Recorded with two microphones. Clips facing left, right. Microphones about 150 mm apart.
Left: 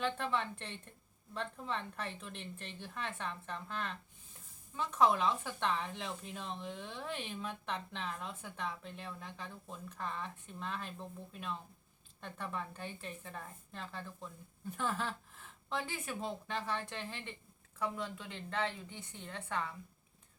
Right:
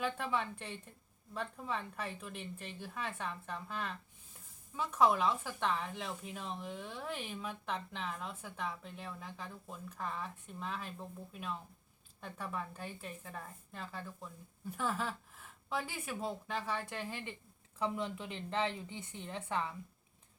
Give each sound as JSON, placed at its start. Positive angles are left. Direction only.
{"t": 0.0, "sound": "a woman's voice", "side_deg": -10}
{"t": 17.7, "sound": "a woman's voice", "side_deg": -20}